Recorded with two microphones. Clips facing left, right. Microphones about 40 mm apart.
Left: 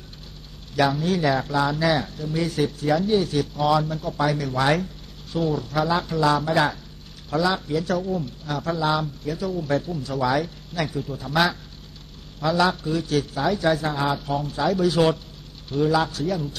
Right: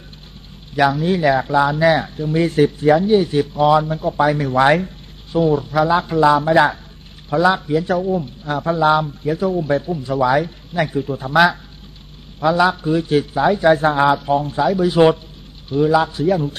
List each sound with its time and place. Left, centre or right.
1.0 s a man's voice: right
12.4 s speech: right
14.6 s speech: centre
16.3 s speech: right